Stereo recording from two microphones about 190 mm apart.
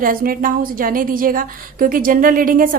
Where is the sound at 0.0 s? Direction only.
50° right (ahead or behind).